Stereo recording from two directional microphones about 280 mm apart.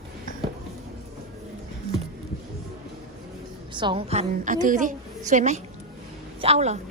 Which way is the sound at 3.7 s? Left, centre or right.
Centre.